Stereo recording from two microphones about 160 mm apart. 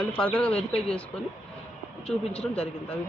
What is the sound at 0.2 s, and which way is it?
Speech, 5° left (ahead or behind).